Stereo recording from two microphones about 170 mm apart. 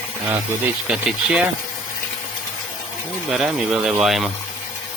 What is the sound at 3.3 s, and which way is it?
Speech, 5° right (ahead or behind).